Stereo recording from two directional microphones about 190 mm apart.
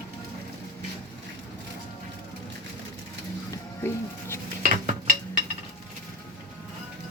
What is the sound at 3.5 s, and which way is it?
Music, 15° left (ahead or behind).